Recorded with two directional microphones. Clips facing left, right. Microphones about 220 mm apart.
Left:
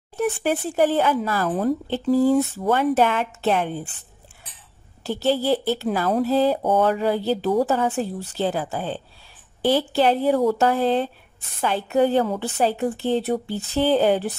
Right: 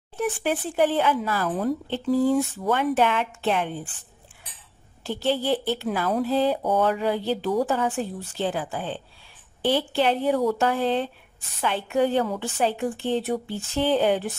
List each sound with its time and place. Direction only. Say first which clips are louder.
0.2 s speech: left 3 dB; 45° left (ahead or behind)
5.0 s speech: left 3 dB; 40° left (ahead or behind)